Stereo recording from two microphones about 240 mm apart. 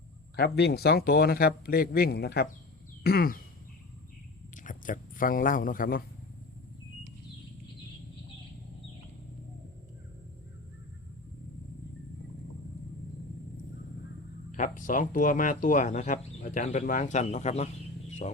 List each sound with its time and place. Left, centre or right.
0.3 s speech: left
3.0 s a sound: left
4.5 s a man's voice: left
14.5 s speech: left